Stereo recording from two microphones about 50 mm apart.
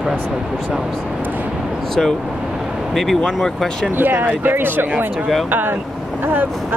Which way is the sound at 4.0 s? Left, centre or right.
Right.